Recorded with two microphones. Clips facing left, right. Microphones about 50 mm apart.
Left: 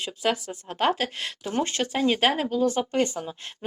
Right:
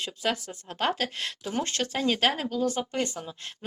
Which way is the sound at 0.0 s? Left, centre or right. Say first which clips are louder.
Left 3 dB; centre.